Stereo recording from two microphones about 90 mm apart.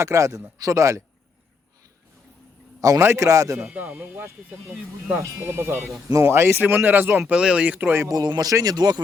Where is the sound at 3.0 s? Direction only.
30° right (ahead or behind).